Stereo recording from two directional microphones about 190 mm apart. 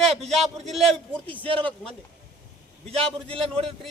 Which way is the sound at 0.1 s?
35° right (ahead or behind).